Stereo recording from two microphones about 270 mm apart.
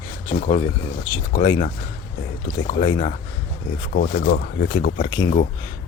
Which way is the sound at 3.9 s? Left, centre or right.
Left.